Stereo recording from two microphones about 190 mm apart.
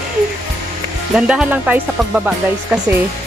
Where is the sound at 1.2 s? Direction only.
5° right (ahead or behind).